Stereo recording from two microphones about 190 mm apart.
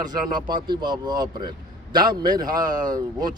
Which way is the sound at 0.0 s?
20° right (ahead or behind).